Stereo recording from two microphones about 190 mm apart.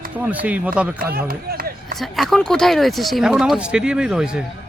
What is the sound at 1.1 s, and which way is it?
Speech, 50° right (ahead or behind).